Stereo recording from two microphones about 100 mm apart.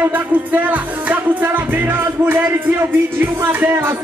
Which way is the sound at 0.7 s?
15° right (ahead or behind).